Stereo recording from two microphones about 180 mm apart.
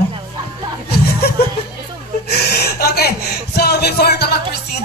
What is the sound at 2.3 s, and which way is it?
Gasp, 60° left (ahead or behind).